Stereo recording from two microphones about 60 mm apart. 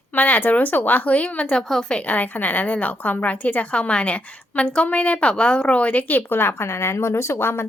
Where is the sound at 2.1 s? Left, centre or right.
Left.